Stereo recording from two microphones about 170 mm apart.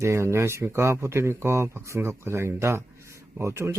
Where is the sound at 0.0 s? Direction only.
15° right (ahead or behind).